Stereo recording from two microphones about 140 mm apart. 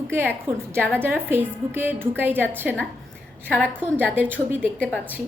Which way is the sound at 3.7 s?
15° right (ahead or behind).